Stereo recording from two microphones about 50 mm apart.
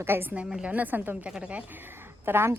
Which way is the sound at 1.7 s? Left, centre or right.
Right.